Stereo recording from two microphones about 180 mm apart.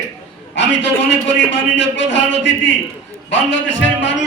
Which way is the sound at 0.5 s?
85° left.